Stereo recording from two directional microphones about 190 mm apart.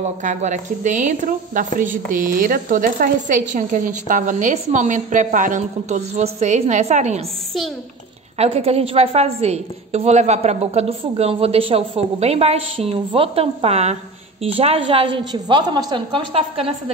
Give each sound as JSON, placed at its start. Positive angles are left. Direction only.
{"t": 0.2, "sound": "a woman's voice", "side_deg": -40}
{"t": 8.4, "sound": "a woman's voice", "side_deg": -30}